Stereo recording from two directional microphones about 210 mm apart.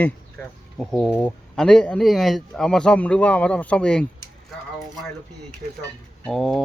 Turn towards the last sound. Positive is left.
turn(degrees=0)  # may be behind; listen again after turning